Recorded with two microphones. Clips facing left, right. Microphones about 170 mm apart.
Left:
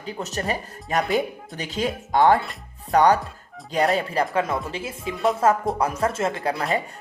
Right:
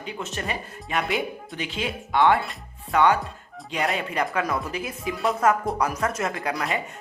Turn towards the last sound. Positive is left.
turn(degrees=30)  # may be behind; listen again after turning